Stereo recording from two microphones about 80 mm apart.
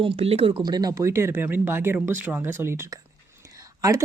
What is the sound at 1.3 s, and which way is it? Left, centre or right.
Speech, right.